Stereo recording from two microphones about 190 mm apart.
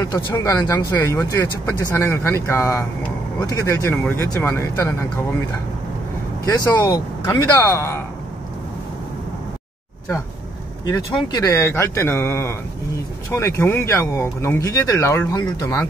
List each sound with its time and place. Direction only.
0.0 s speech: 15° left (ahead or behind)
6.4 s speech: 20° left (ahead or behind)
10.9 s speech: 20° left (ahead or behind)